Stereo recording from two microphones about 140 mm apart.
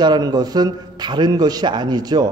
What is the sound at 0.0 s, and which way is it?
A man's voice, 30° right (ahead or behind).